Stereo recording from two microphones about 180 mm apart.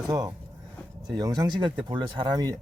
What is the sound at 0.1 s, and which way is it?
Speech, 20° right (ahead or behind).